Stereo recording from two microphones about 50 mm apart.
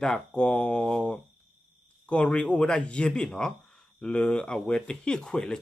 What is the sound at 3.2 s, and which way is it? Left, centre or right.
Speech, centre.